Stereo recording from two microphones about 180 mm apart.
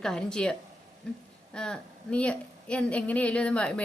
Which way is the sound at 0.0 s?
5° left (ahead or behind).